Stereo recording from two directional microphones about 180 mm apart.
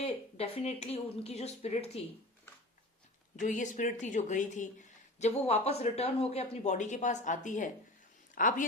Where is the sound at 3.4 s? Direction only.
45° left (ahead or behind).